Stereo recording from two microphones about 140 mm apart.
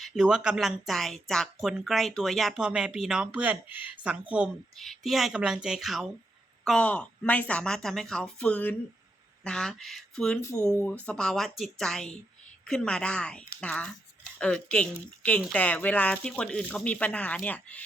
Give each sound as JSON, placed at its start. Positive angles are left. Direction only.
{"t": 0.0, "sound": "a woman's voice", "side_deg": -5}
{"t": 10.4, "sound": "a woman's voice", "side_deg": 20}